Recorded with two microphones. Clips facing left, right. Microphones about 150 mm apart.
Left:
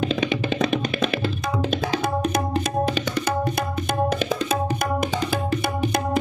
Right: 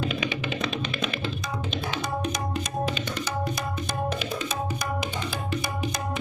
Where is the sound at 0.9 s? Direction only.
75° left (ahead or behind).